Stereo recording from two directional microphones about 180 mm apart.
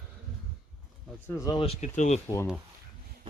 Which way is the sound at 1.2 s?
20° left (ahead or behind).